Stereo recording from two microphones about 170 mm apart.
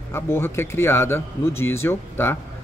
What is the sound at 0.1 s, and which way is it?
Speech, 15° left (ahead or behind).